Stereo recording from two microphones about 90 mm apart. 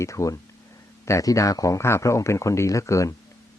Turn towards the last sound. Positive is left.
turn(degrees=35)  # may be behind; listen again after turning